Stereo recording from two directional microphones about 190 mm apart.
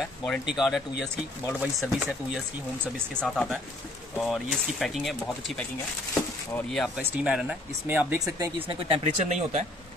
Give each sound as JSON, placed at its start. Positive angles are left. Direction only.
{"t": 0.0, "sound": "speech", "side_deg": 0}
{"t": 8.5, "sound": "speech", "side_deg": -30}